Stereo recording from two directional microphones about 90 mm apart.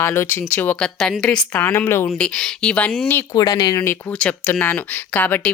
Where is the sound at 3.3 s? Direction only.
45° left (ahead or behind).